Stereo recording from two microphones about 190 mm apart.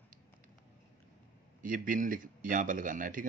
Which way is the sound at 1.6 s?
45° right (ahead or behind).